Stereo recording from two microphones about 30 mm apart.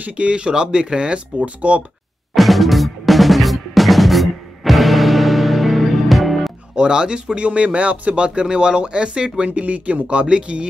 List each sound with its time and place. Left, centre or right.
0.0 s speech: right
1.4 s speech: right
2.3 s drum: centre
6.7 s speech: right
8.5 s speech: right
9.5 s speech: right